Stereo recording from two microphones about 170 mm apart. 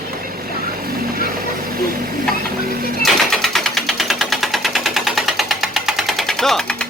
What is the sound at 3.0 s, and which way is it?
Sewing machine, centre (ahead or behind).